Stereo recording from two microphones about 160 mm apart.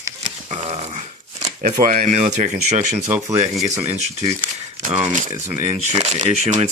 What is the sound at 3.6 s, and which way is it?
Speech, 40° right (ahead or behind).